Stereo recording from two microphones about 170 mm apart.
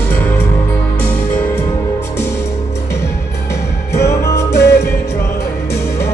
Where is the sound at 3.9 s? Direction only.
15° left (ahead or behind).